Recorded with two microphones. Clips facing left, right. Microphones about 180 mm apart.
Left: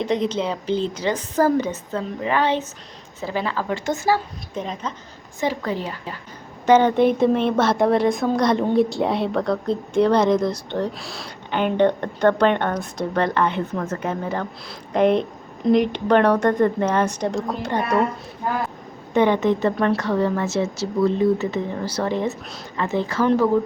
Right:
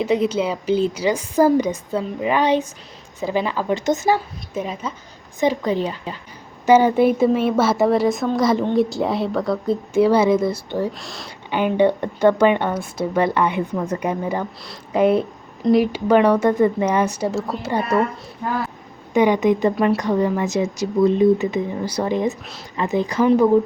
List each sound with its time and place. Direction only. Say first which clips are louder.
0.0 s a woman's voice: right 3 dB; 5° right (ahead or behind)
4.5 s a woman's voice: right 2 dB; 5° right (ahead or behind)
5.4 s a woman's voice: right 5 dB; 20° right (ahead or behind)
6.7 s a woman's voice: right 1 dB; 10° right (ahead or behind)
19.1 s a woman's voice: right 2 dB; 10° right (ahead or behind)